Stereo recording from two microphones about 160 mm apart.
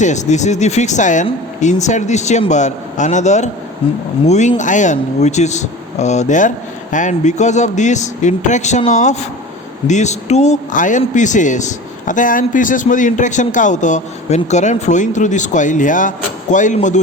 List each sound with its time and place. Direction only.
0.0 s a man's voice: 50° left (ahead or behind)